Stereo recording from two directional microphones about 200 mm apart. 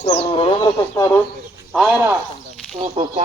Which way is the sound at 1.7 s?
5° right (ahead or behind).